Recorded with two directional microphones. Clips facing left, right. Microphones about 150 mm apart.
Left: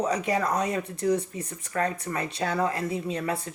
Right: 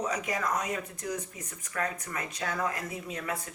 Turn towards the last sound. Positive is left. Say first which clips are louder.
# left 7 dB
turn(degrees=30)  # may be behind; listen again after turning